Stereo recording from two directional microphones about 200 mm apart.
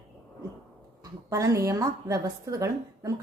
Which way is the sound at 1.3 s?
15° right (ahead or behind).